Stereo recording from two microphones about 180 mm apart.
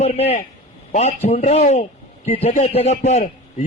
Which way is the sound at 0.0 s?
35° left (ahead or behind).